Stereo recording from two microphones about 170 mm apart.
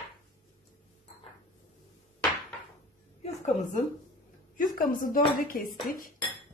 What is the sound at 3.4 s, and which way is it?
A woman's voice, 45° left (ahead or behind).